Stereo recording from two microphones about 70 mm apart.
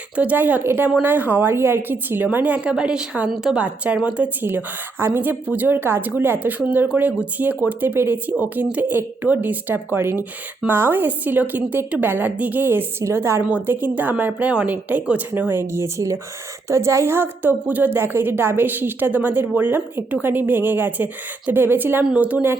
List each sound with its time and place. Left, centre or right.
0.2 s a woman's voice: right
0.6 s a woman's voice: right
13.5 s a woman's voice: right
15.4 s a woman's voice: right